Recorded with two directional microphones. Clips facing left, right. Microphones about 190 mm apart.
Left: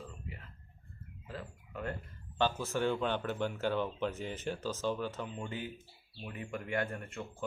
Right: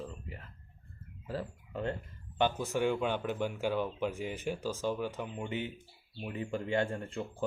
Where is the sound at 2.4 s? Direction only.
15° right (ahead or behind).